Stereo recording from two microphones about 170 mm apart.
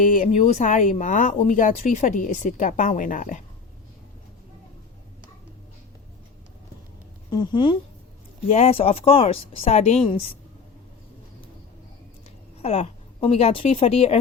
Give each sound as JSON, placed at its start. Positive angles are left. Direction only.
{"t": 0.0, "sound": "speech", "side_deg": 50}
{"t": 7.3, "sound": "a woman's voice", "side_deg": 25}
{"t": 12.6, "sound": "a woman's voice", "side_deg": 40}